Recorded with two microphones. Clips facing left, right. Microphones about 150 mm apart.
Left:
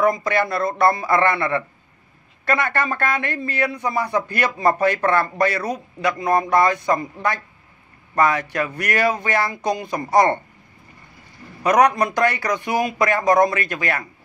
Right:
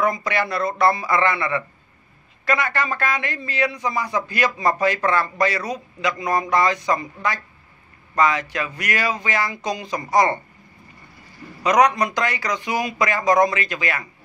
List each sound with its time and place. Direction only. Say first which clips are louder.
0.0 s a man's voice: left 3 dB; 50° left (ahead or behind)
11.6 s a man's voice: left 1 dB; 55° left (ahead or behind)